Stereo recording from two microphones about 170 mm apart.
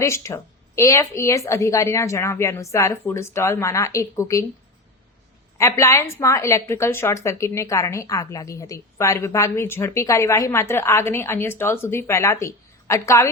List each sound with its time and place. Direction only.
0.0 s a woman's voice: 15° left (ahead or behind)
5.5 s a woman's voice: 15° left (ahead or behind)